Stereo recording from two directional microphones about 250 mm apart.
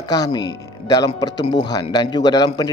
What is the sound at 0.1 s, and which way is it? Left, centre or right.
Speech, centre.